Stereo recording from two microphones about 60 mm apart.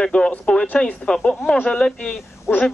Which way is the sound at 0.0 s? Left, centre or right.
Centre.